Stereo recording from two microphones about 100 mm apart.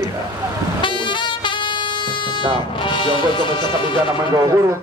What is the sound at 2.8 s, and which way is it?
Speech, 55° left (ahead or behind).